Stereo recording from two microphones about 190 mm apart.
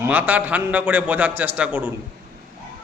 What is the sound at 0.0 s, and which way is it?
A man's voice, 10° right (ahead or behind).